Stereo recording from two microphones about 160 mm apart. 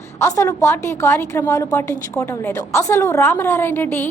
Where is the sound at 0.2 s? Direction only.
15° left (ahead or behind).